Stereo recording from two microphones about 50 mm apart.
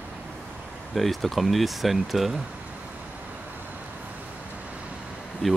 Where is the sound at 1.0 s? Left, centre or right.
Centre.